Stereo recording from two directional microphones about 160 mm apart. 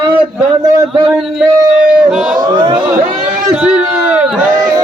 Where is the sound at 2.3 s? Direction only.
25° right (ahead or behind).